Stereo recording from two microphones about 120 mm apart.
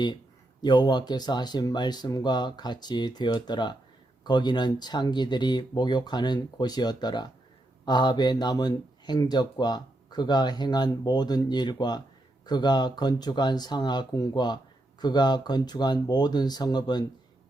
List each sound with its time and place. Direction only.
0.6 s speech: 35° left (ahead or behind)